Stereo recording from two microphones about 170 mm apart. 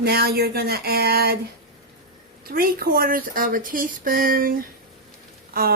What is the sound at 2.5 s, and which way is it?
Speech, 60° right (ahead or behind).